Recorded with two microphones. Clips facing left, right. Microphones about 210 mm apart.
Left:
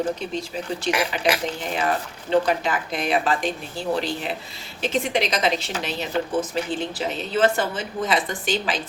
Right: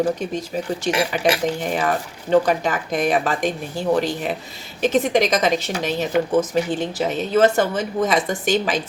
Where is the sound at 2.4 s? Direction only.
45° right (ahead or behind).